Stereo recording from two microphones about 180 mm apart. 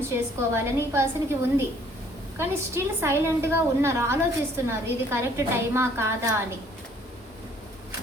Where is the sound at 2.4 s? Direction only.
15° right (ahead or behind).